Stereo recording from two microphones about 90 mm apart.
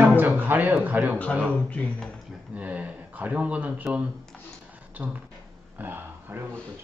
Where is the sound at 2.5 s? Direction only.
15° right (ahead or behind).